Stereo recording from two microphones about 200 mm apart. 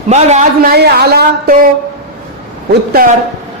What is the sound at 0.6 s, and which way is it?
Speech, 50° right (ahead or behind).